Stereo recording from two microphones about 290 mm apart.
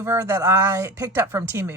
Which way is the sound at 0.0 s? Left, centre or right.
Centre.